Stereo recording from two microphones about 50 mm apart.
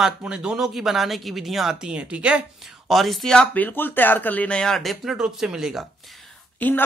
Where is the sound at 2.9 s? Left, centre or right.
Centre.